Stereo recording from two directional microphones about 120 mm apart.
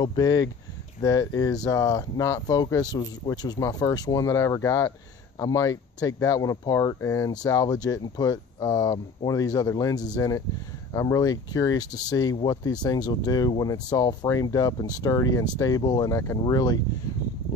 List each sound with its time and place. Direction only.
0.0 s speech: 30° left (ahead or behind)